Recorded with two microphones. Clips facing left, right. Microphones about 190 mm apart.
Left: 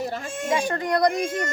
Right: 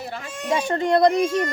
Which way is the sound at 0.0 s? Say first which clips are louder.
Left 3 dB; 45° left (ahead or behind).